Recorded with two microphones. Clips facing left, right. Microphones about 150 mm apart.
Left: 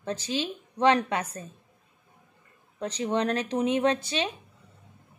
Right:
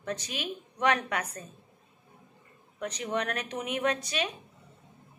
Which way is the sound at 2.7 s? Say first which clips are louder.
Left 4 dB; 30° left (ahead or behind).